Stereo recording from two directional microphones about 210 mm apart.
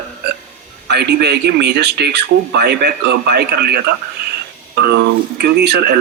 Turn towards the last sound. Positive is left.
turn(degrees=-50)  # may be behind; listen again after turning